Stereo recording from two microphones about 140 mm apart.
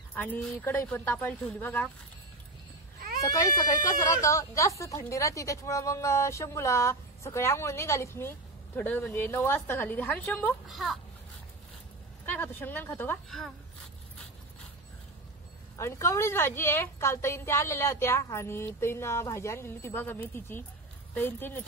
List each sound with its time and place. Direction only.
0.1 s a sound: 15° left (ahead or behind)
0.7 s a woman's voice: 15° left (ahead or behind)
3.2 s speech: 25° left (ahead or behind)
10.7 s speech: centre (ahead or behind)
12.3 s a woman's voice: 15° left (ahead or behind)
15.8 s a woman's voice: 20° left (ahead or behind)